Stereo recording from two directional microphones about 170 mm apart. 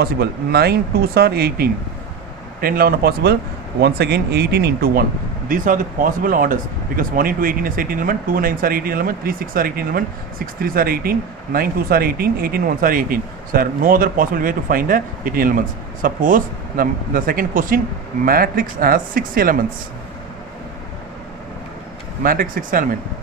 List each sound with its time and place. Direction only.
0.0 s speech: 70° right (ahead or behind)
5.5 s speech: 50° right (ahead or behind)
22.2 s speech: 55° right (ahead or behind)